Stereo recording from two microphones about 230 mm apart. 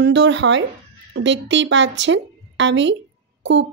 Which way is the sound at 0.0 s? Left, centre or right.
Right.